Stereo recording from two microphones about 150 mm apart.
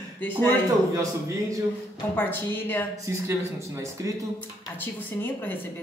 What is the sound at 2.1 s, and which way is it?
Speech, 10° left (ahead or behind).